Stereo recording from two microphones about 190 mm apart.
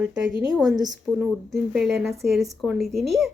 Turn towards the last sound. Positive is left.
turn(degrees=0)  # may be behind; listen again after turning